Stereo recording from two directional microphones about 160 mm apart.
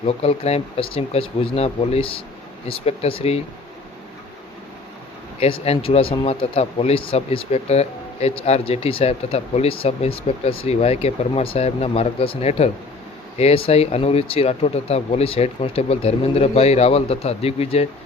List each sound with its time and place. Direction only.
0.0 s speech: 40° left (ahead or behind)
5.4 s speech: 40° left (ahead or behind)